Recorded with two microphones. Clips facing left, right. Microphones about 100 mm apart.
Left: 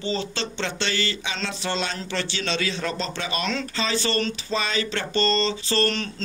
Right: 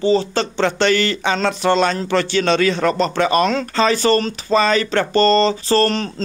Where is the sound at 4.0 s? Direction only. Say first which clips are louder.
Right 9 dB; 50° right (ahead or behind).